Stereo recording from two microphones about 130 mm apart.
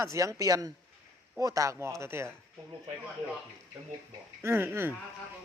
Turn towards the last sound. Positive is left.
turn(degrees=-15)  # may be behind; listen again after turning